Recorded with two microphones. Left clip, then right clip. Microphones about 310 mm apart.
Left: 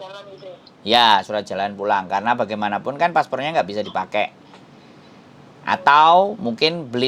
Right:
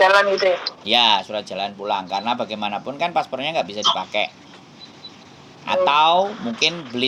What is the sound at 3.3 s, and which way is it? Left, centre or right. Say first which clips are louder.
Speech: left 2 dB; left.